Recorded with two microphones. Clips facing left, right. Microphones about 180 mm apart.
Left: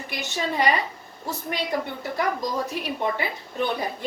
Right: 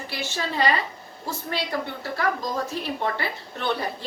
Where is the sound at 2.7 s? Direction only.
15° left (ahead or behind).